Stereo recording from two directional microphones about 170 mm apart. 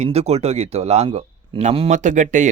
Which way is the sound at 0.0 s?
40° right (ahead or behind).